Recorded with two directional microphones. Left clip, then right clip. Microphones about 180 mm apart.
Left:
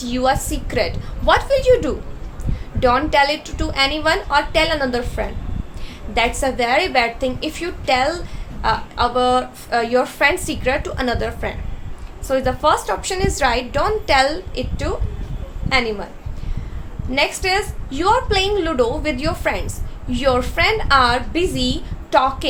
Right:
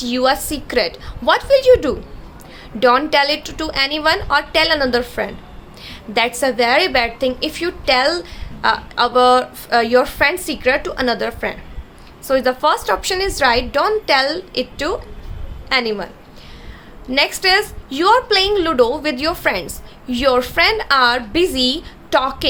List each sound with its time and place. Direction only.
0.0 s speech: 25° right (ahead or behind)
17.1 s speech: 25° right (ahead or behind)